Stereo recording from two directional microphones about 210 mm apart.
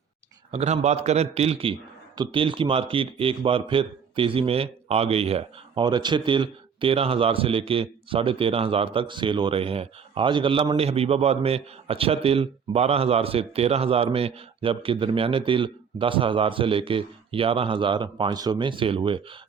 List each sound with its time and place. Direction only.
0.5 s a man's voice: 30° right (ahead or behind)